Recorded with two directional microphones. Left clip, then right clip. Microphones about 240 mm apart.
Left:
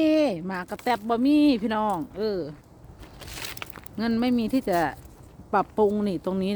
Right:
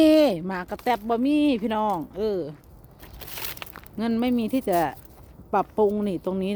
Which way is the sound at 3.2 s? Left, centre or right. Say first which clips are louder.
Even; right.